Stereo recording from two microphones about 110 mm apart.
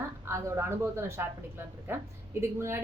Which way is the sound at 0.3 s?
25° right (ahead or behind).